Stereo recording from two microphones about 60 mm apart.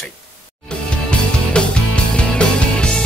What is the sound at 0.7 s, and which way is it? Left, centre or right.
Music, centre.